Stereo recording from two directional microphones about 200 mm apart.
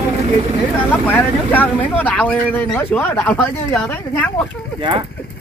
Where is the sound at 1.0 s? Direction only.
10° left (ahead or behind).